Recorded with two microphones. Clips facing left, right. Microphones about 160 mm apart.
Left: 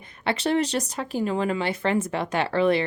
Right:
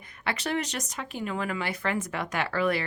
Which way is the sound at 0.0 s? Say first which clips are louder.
Left 6 dB; 30° left (ahead or behind).